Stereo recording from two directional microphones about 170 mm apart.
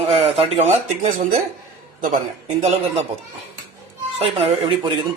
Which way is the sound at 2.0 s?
45° right (ahead or behind).